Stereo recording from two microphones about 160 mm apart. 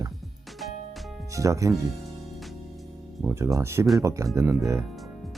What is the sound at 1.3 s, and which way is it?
Speech, 20° right (ahead or behind).